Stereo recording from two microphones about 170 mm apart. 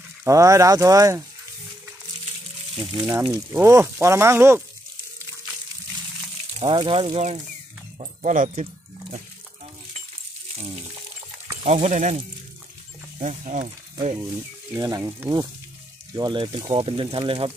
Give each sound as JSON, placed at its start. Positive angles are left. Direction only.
{"t": 0.2, "sound": "speech", "side_deg": -20}
{"t": 2.8, "sound": "speech", "side_deg": -20}
{"t": 6.6, "sound": "speech", "side_deg": -30}
{"t": 11.6, "sound": "speech", "side_deg": -40}
{"t": 13.2, "sound": "speech", "side_deg": -40}
{"t": 14.1, "sound": "speech", "side_deg": -20}